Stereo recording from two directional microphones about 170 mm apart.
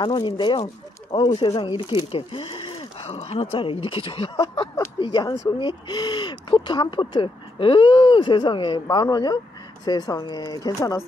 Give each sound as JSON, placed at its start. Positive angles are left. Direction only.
{"t": 0.0, "sound": "speech", "side_deg": 25}